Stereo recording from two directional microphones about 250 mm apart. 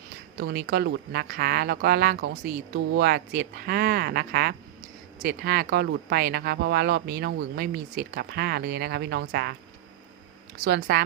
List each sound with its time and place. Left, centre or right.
0.3 s speech: right
10.6 s speech: right